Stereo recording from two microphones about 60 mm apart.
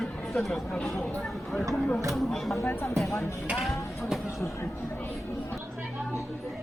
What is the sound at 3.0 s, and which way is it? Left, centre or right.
Music, left.